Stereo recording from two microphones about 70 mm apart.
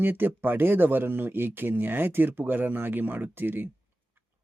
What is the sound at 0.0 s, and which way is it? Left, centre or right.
Speech, right.